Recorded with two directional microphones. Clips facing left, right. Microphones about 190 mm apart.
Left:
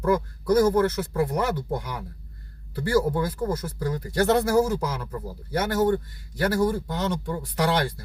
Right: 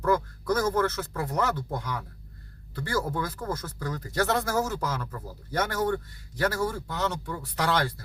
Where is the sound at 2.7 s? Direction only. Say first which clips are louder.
Left 7 dB; 30° left (ahead or behind).